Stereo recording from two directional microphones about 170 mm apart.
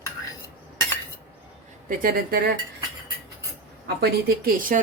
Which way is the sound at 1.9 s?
55° right (ahead or behind).